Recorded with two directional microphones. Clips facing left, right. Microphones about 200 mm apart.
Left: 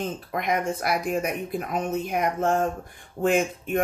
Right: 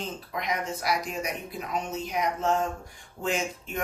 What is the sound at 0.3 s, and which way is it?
Speech, 55° left (ahead or behind).